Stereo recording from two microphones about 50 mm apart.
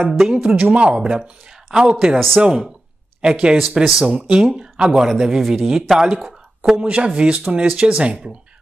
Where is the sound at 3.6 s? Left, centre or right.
Centre.